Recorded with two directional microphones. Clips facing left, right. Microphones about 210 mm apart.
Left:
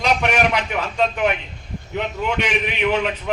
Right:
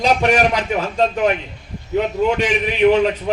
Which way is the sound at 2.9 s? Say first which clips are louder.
Right 5 dB; 40° right (ahead or behind).